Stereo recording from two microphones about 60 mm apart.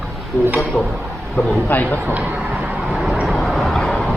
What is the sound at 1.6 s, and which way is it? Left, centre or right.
Speech, left.